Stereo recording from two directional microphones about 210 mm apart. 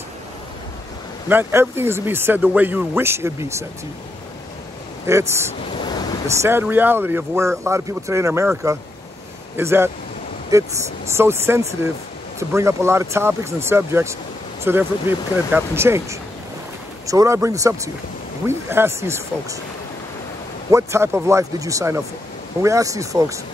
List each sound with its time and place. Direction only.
1.3 s speech: 10° right (ahead or behind)
5.0 s speech: 10° right (ahead or behind)
5.9 s waves: 20° left (ahead or behind)
6.3 s speech: 10° right (ahead or behind)
20.7 s speech: 10° right (ahead or behind)